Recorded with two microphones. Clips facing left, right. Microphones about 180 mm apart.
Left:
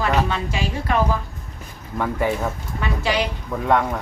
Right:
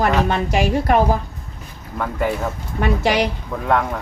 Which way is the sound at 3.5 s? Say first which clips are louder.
Left 1 dB; centre (ahead or behind).